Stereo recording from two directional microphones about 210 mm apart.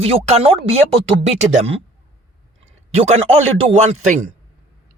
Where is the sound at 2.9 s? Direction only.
30° right (ahead or behind).